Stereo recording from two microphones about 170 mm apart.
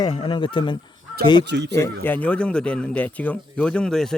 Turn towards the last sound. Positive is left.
turn(degrees=5)  # may be behind; listen again after turning